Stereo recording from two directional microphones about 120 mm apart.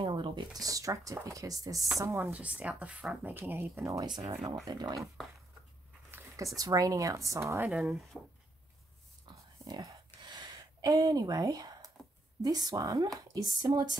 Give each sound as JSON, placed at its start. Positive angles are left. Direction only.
{"t": 0.0, "sound": "speech", "side_deg": -40}
{"t": 2.3, "sound": "speech", "side_deg": -10}
{"t": 6.1, "sound": "speech", "side_deg": -25}
{"t": 8.1, "sound": "speech", "side_deg": -5}
{"t": 9.3, "sound": "a sound", "side_deg": -40}
{"t": 12.4, "sound": "a woman's voice", "side_deg": -35}